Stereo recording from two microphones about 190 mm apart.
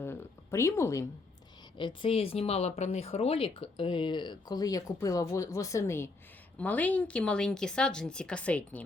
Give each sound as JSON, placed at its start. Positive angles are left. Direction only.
{"t": 0.0, "sound": "speech", "side_deg": 15}
{"t": 1.8, "sound": "a woman's voice", "side_deg": 25}